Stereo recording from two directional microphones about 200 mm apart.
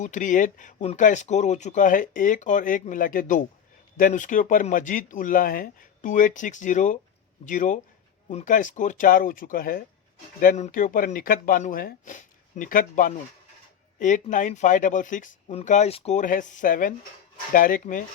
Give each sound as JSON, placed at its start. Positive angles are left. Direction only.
{"t": 0.0, "sound": "speech", "side_deg": 40}